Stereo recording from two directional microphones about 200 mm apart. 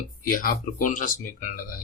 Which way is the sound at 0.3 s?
45° left (ahead or behind).